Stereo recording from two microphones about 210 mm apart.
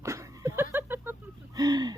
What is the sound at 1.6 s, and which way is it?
Speech, 20° right (ahead or behind).